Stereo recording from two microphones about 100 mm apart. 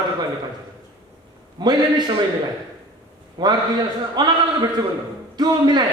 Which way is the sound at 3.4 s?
45° right (ahead or behind).